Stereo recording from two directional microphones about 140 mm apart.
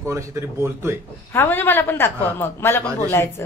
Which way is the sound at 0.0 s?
20° right (ahead or behind).